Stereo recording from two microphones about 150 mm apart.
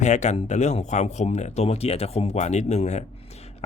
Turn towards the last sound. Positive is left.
turn(degrees=50)  # may be behind; listen again after turning